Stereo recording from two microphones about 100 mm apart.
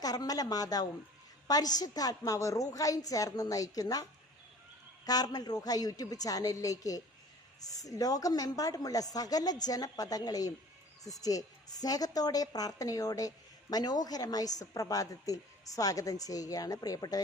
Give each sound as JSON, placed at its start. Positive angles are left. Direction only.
{"t": 0.0, "sound": "a woman's voice", "side_deg": 40}
{"t": 5.0, "sound": "a woman's voice", "side_deg": 40}